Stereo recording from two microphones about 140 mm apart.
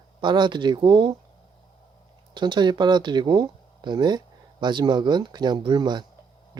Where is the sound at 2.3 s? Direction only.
35° right (ahead or behind).